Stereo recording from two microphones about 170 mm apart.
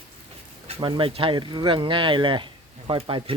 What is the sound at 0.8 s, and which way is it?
Speech, 30° right (ahead or behind).